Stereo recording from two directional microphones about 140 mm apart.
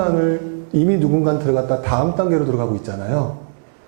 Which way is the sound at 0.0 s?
15° right (ahead or behind).